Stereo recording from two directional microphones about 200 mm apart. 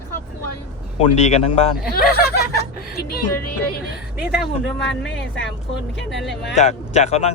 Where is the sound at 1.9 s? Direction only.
50° left (ahead or behind).